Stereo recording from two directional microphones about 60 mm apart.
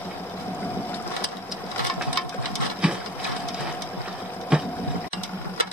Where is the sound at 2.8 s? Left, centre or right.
Centre.